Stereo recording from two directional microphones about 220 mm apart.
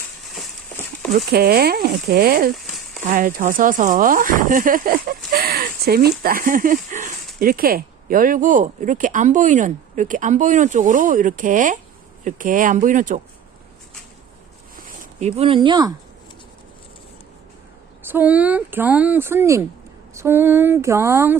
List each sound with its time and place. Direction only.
1.1 s speech: 45° right (ahead or behind)
2.6 s a sound: centre (ahead or behind)
3.1 s speech: 40° right (ahead or behind)
14.8 s speech: 30° right (ahead or behind)
18.0 s speech: 10° right (ahead or behind)